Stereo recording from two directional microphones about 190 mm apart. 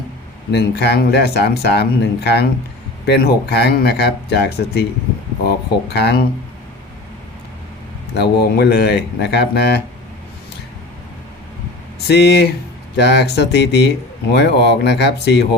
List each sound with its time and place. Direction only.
0.5 s speech: 60° left (ahead or behind)
8.1 s speech: 60° left (ahead or behind)
12.0 s speech: 60° left (ahead or behind)